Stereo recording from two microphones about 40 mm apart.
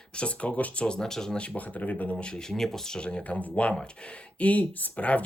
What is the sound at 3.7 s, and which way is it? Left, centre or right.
Speech, left.